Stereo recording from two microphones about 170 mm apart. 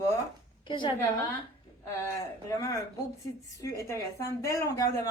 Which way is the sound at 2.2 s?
20° left (ahead or behind).